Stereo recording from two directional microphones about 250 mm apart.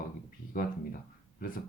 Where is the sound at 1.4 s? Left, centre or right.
Left.